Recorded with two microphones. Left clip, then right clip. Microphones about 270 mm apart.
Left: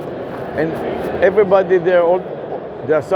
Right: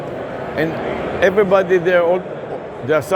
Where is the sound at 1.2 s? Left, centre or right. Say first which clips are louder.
Left 1 dB; right.